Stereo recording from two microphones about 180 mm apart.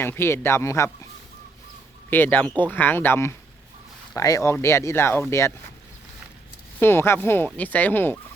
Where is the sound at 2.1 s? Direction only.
10° left (ahead or behind).